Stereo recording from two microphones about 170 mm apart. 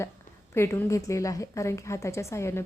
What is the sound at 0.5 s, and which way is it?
A woman's voice, 15° left (ahead or behind).